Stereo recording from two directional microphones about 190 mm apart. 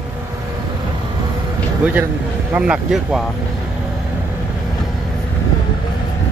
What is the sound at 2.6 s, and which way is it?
Speech, 5° right (ahead or behind).